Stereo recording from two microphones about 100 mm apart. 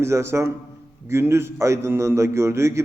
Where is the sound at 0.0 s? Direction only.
25° right (ahead or behind).